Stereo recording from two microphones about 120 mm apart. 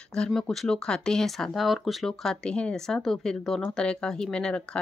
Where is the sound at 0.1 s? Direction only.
5° left (ahead or behind).